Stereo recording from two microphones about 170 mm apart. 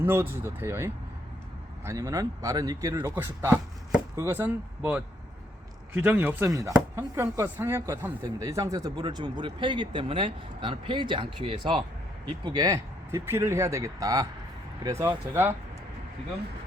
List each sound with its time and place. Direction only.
0.0 s a man's voice: 15° right (ahead or behind)